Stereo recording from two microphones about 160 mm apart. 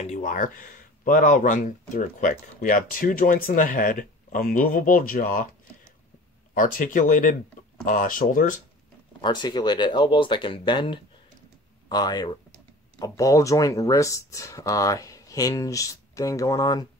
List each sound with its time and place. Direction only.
0.0 s speech: 50° left (ahead or behind)
9.2 s speech: 25° left (ahead or behind)